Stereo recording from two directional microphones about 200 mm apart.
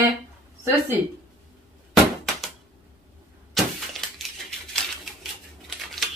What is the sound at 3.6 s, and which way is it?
Vehicle, centre (ahead or behind).